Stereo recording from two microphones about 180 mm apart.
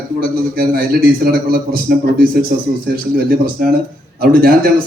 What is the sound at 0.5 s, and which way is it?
A man's voice, 55° right (ahead or behind).